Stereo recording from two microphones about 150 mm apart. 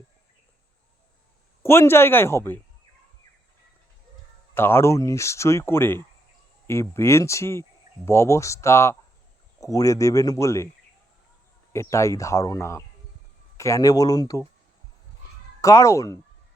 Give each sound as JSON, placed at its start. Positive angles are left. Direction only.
{"t": 1.6, "sound": "speech", "side_deg": 15}
{"t": 4.5, "sound": "speech", "side_deg": 15}
{"t": 11.7, "sound": "speech", "side_deg": 20}
{"t": 15.6, "sound": "speech", "side_deg": 20}